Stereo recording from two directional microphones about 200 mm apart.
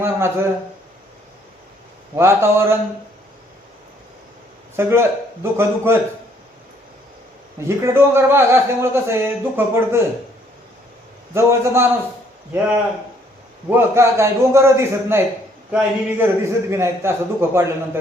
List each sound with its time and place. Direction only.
0.0 s speech: 15° right (ahead or behind)
2.1 s speech: 15° right (ahead or behind)
4.8 s speech: 15° right (ahead or behind)
7.8 s speech: 15° right (ahead or behind)
11.3 s speech: 15° right (ahead or behind)
13.7 s speech: 10° right (ahead or behind)